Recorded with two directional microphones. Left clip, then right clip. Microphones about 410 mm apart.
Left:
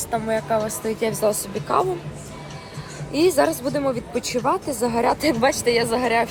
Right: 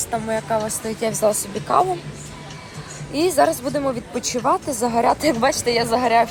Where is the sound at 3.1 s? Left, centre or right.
Centre.